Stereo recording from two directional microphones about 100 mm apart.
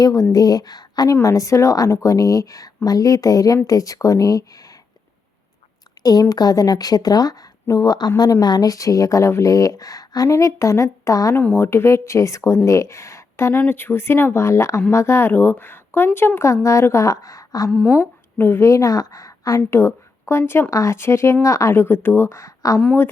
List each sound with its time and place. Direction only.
0.0 s speech: 35° left (ahead or behind)
6.0 s speech: 40° left (ahead or behind)
17.7 s speech: 10° left (ahead or behind)
18.0 s a woman's voice: 20° left (ahead or behind)